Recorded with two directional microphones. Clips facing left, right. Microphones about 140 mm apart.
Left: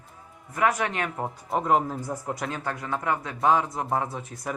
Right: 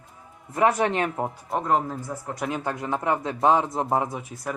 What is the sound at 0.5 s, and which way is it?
Speech, 30° right (ahead or behind).